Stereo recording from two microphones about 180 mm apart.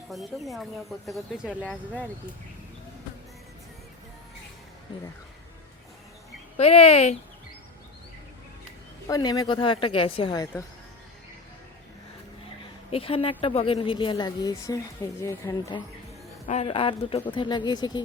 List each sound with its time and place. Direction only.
0.1 s speech: centre (ahead or behind)
6.6 s speech: 35° left (ahead or behind)
9.0 s a woman's voice: 20° left (ahead or behind)
12.9 s a woman's voice: 30° left (ahead or behind); by 15.5 s 15° left (ahead or behind)
16.5 s a woman's voice: 35° left (ahead or behind)